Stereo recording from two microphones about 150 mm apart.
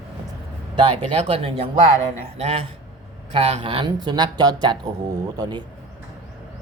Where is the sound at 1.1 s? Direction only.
40° right (ahead or behind).